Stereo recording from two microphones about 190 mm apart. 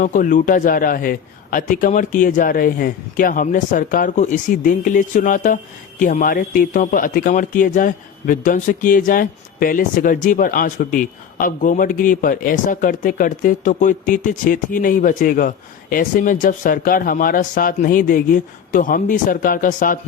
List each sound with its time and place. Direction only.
0.0 s speech: 45° left (ahead or behind)